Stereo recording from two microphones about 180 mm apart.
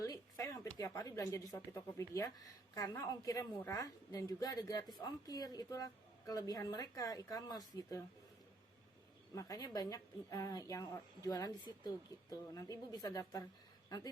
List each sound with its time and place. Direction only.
0.0 s speech: 20° left (ahead or behind)
9.3 s speech: 20° left (ahead or behind)